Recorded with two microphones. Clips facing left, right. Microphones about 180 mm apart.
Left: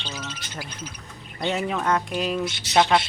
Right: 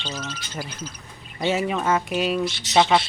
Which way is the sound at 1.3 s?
5° right (ahead or behind).